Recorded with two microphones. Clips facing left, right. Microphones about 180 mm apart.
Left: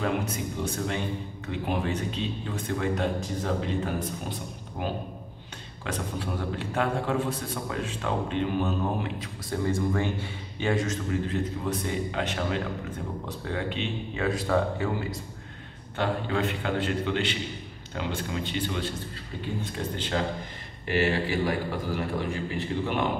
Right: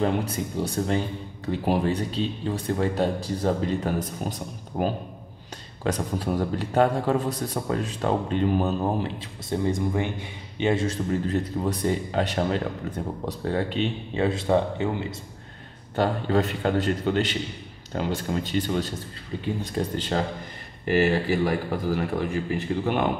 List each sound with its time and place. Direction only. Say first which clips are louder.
0.0 s a man's voice: right 4 dB; 35° right (ahead or behind)
5.9 s a man's voice: right 6 dB; 40° right (ahead or behind); by 15.1 s 25° right (ahead or behind)
16.0 s a man's voice: right 4 dB; 40° right (ahead or behind)